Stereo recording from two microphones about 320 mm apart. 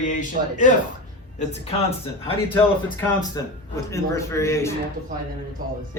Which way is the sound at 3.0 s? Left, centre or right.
Centre.